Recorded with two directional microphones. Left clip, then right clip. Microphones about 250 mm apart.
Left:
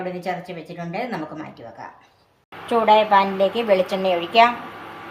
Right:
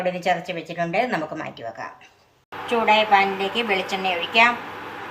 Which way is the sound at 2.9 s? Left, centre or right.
Left.